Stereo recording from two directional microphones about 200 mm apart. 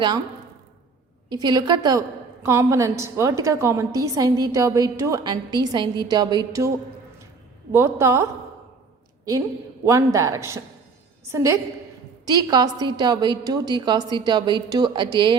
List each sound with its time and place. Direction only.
1.3 s a woman's voice: 20° right (ahead or behind)
9.8 s a woman's voice: 15° right (ahead or behind)